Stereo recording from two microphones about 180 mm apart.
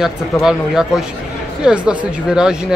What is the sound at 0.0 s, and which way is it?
Speech, 5° right (ahead or behind).